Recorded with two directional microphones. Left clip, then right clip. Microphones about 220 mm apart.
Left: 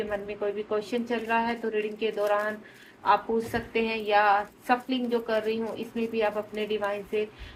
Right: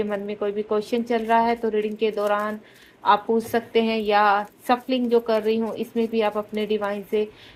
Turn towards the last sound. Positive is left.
turn(degrees=-45)  # may be behind; listen again after turning